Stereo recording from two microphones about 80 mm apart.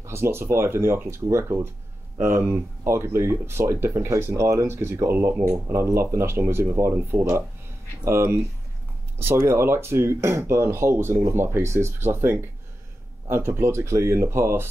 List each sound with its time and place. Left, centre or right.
0.0 s speech: right